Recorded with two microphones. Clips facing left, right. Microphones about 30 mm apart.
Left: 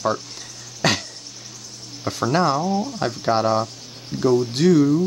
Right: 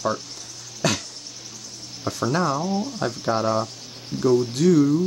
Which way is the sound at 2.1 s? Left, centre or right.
Centre.